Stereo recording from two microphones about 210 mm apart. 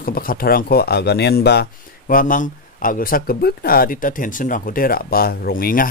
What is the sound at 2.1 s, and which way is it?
Speech, 40° left (ahead or behind).